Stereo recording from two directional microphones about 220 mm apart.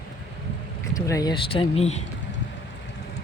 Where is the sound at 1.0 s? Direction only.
15° left (ahead or behind).